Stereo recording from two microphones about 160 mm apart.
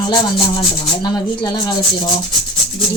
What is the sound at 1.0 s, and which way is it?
Speech, 25° left (ahead or behind).